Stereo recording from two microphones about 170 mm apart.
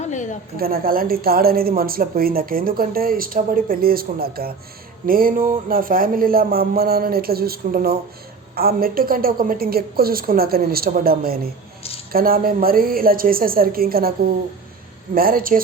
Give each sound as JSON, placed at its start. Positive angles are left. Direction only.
{"t": 0.0, "sound": "a sound", "side_deg": 45}
{"t": 0.5, "sound": "a woman's voice", "side_deg": -60}
{"t": 15.1, "sound": "a woman's voice", "side_deg": -60}